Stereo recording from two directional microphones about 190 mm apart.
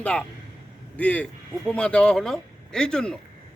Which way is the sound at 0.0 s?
5° left (ahead or behind).